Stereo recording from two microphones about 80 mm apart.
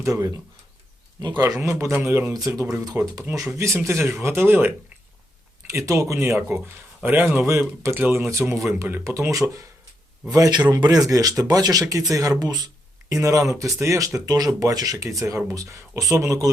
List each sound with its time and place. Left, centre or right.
0.0 s speech: right
1.4 s speech: right
2.5 s speech: right
3.0 s speech: right
4.0 s speech: right
5.7 s speech: right
7.9 s speech: right
8.3 s speech: right
10.2 s speech: right
10.8 s speech: right